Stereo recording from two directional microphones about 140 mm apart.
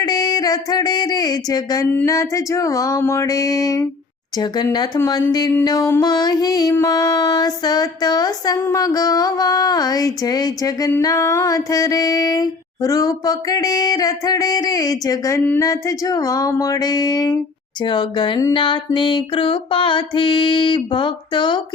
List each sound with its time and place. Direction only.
0.0 s speech: 30° left (ahead or behind)
2.0 s mantra: 20° left (ahead or behind)
17.8 s a sound: 35° left (ahead or behind)